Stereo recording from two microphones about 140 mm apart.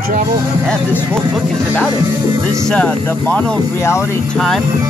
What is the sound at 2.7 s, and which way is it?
Speech, 10° left (ahead or behind).